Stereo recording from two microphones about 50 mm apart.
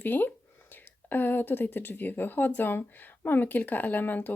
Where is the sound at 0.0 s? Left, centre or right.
Left.